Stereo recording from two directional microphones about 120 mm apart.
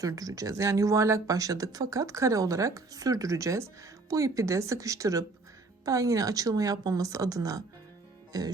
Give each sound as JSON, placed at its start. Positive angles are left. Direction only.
{"t": 0.0, "sound": "speech", "side_deg": -30}
{"t": 8.3, "sound": "music", "side_deg": -30}